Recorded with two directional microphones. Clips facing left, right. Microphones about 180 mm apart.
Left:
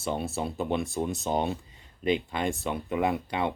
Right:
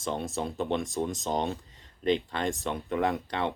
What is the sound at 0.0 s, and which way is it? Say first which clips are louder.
Speech: left 1 dB; 5° left (ahead or behind).